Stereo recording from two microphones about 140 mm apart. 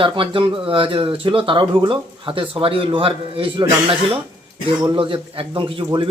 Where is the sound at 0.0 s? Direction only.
35° right (ahead or behind).